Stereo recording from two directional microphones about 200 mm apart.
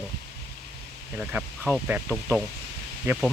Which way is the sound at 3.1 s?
10° right (ahead or behind).